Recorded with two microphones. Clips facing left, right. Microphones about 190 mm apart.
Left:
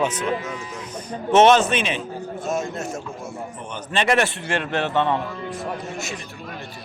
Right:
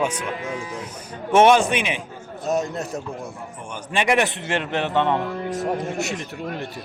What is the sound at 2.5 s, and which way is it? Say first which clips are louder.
Speech: right 3 dB; 35° right (ahead or behind).